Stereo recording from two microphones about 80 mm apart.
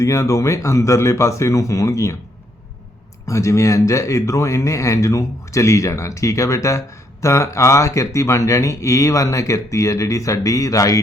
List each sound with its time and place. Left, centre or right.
0.0 s speech: left
3.2 s speech: left